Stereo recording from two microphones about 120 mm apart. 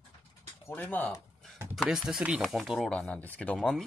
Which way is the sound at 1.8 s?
5° right (ahead or behind).